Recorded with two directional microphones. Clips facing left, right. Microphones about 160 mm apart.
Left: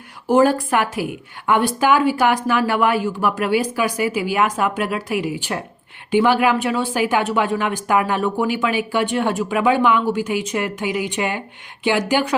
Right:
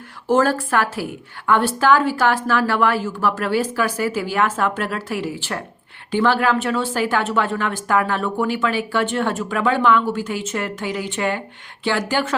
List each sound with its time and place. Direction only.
0.3 s speech: 15° left (ahead or behind)